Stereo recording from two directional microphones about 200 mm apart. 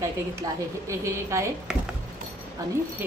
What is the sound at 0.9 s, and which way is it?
Speech, 15° right (ahead or behind).